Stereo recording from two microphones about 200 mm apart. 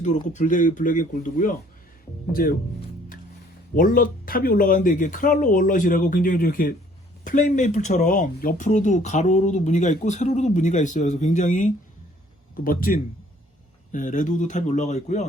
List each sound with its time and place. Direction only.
0.3 s speech: 40° left (ahead or behind)
3.8 s speech: 40° left (ahead or behind)